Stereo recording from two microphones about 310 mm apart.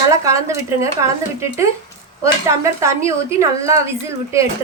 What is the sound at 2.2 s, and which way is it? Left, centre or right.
A woman's voice, centre.